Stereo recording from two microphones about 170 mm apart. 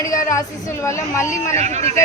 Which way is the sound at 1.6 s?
40° right (ahead or behind).